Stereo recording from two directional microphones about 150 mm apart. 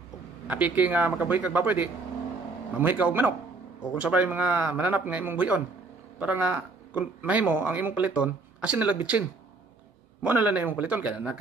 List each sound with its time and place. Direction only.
0.5 s speech: 10° right (ahead or behind)
10.2 s speech: 10° right (ahead or behind)